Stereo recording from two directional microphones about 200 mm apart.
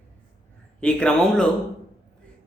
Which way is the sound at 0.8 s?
5° left (ahead or behind).